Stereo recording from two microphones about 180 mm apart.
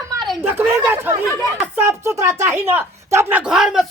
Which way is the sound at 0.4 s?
15° right (ahead or behind).